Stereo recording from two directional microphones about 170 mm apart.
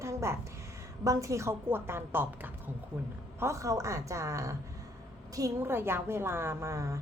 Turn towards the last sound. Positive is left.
turn(degrees=-15)  # may be behind; listen again after turning